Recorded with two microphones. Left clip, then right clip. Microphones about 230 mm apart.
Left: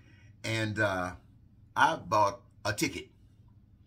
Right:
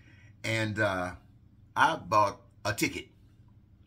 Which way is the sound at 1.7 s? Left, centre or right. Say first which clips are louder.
Right 1 dB; centre.